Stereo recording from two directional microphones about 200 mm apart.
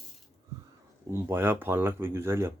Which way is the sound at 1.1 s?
10° right (ahead or behind).